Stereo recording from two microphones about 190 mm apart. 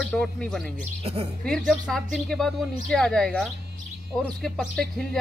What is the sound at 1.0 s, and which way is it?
Speech, 30° right (ahead or behind).